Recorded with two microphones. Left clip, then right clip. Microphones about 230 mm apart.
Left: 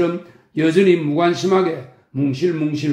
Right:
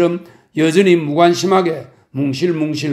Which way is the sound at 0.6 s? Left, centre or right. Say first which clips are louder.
Right 2 dB; right.